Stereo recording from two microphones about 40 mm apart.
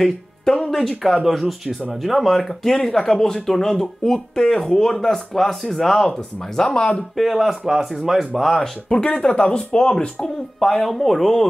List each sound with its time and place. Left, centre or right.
0.0 s music: centre
1.0 s speech: centre
2.6 s speech: centre
7.2 s speech: centre
8.9 s speech: left
10.6 s speech: centre